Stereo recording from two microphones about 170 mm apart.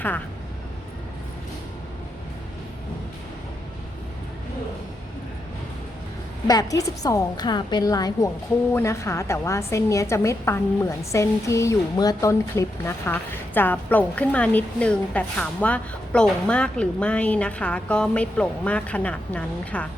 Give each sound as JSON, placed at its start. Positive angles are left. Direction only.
{"t": 6.5, "sound": "a woman's voice", "side_deg": 20}